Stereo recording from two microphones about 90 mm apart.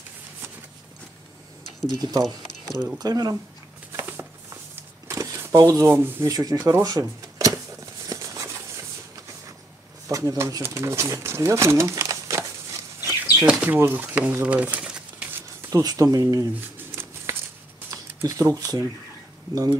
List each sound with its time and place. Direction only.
2.0 s speech: 45° right (ahead or behind)
3.9 s a sound: 20° right (ahead or behind)
5.1 s a sound: 45° right (ahead or behind)
5.4 s speech: 35° right (ahead or behind)
6.2 s speech: 45° right (ahead or behind)
6.8 s cash register: 45° right (ahead or behind)
8.1 s a sound: 35° right (ahead or behind)
10.0 s speech: 35° right (ahead or behind)
13.5 s speech: 10° right (ahead or behind)
13.7 s speech: 25° right (ahead or behind)
15.7 s speech: 45° right (ahead or behind)
16.9 s a sound: 25° right (ahead or behind)
17.9 s speech: 40° right (ahead or behind)